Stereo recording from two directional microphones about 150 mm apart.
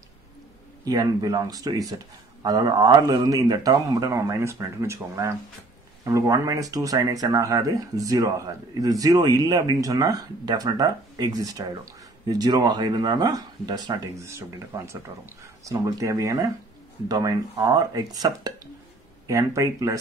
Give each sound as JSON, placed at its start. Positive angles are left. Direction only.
{"t": 0.8, "sound": "speech", "side_deg": -25}